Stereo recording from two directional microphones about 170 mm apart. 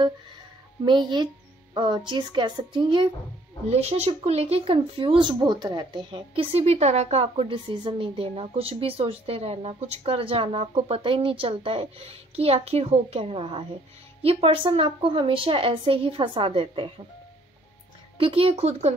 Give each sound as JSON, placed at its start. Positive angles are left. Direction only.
{"t": 0.8, "sound": "a woman's voice", "side_deg": -25}
{"t": 18.1, "sound": "a woman's voice", "side_deg": -30}